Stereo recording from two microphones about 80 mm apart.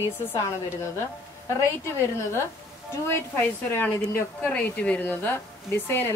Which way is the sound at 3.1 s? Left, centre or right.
Left.